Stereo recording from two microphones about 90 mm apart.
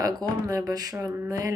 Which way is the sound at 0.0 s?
45° right (ahead or behind).